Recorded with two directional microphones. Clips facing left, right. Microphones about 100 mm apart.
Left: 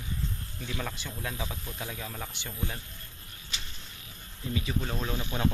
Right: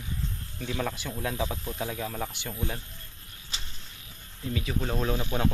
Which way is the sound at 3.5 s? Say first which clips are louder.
Even; 35° right (ahead or behind).